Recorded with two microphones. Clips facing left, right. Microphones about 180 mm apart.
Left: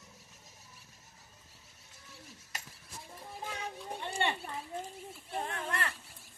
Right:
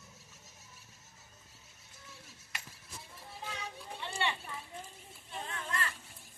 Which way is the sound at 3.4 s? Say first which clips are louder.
Left 3 dB; 45° left (ahead or behind).